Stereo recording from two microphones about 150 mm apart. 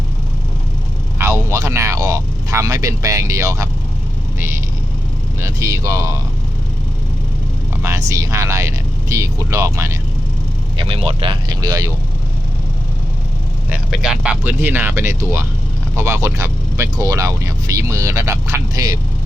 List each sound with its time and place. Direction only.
1.2 s speech: 20° right (ahead or behind)
4.4 s vehicle: 15° right (ahead or behind)
5.4 s speech: 20° right (ahead or behind)
7.8 s speech: 20° right (ahead or behind)
10.8 s speech: 35° right (ahead or behind)
13.7 s speech: 5° right (ahead or behind); by 18.9 s 25° right (ahead or behind)